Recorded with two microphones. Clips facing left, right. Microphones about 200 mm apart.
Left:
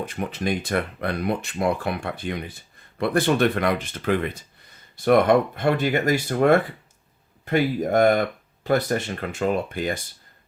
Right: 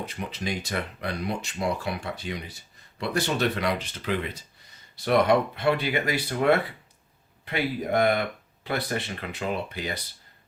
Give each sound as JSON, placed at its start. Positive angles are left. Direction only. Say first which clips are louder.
{"t": 0.0, "sound": "speech", "louder": "left 6 dB", "side_deg": 50}